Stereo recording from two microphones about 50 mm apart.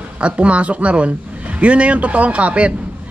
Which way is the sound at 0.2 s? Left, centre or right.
Right.